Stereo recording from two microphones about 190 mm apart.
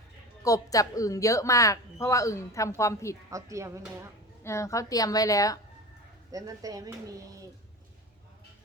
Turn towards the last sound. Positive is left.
turn(degrees=-20)  # may be behind; listen again after turning